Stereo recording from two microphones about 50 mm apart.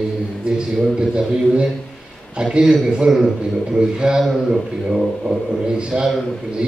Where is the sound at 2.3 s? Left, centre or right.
Centre.